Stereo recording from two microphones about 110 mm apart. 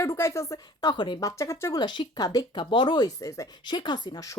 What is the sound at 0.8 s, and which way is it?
Speech, 40° left (ahead or behind).